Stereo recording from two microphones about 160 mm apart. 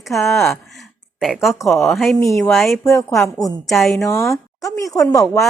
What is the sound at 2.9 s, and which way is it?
Speech, 20° left (ahead or behind).